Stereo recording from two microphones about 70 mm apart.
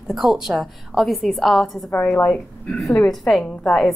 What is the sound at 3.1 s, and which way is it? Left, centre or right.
Speech, centre.